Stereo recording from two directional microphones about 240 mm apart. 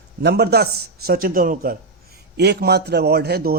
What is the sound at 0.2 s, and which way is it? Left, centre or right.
A man's voice, right.